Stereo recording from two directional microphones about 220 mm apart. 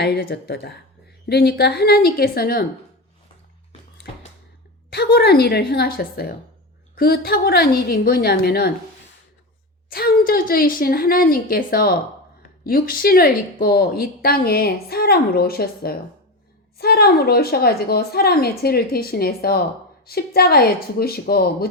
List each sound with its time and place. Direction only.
0.0 s a woman's voice: 45° left (ahead or behind)
4.9 s a woman's voice: 45° left (ahead or behind)
9.9 s a woman's voice: 40° left (ahead or behind)